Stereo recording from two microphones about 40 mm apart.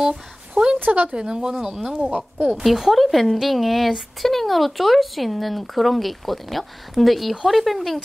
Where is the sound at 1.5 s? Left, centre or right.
Centre.